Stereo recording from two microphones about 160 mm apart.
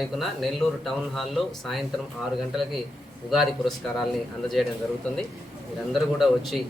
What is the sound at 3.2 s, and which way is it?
Speech, centre (ahead or behind).